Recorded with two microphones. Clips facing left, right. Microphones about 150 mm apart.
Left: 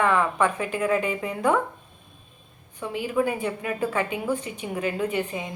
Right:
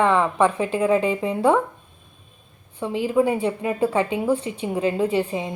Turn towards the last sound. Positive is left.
turn(degrees=-30)  # may be behind; listen again after turning